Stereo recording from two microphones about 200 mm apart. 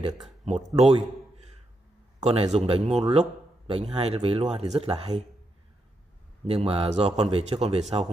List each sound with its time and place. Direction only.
0.0 s speech: 35° right (ahead or behind)
0.8 s a sound: 30° right (ahead or behind)
2.1 s a man's voice: 30° right (ahead or behind)
6.4 s a man's voice: 30° right (ahead or behind)